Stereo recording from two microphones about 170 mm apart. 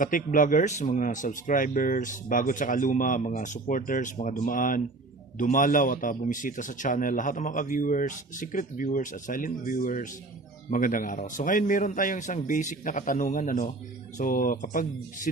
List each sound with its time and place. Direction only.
0.0 s speech: 50° left (ahead or behind)